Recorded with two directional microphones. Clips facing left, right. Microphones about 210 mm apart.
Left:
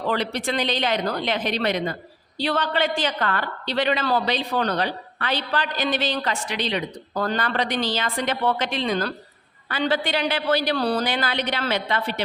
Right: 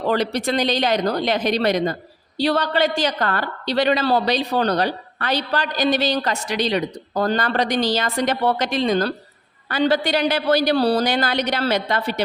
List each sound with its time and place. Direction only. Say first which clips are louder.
0.1 s a woman's voice: right 5 dB; 40° right (ahead or behind)